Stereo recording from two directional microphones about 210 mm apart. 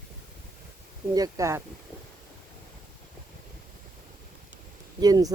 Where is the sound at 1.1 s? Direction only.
15° right (ahead or behind).